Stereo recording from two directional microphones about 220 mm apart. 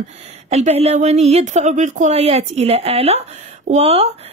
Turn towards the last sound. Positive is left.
turn(degrees=-25)  # may be behind; listen again after turning